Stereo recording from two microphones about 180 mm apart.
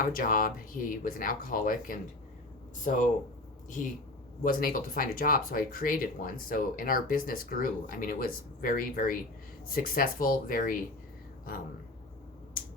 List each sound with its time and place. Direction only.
0.0 s speech: 50° left (ahead or behind)
4.4 s speech: 50° left (ahead or behind)